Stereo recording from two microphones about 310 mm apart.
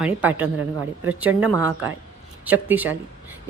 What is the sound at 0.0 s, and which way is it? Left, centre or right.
Speech, centre.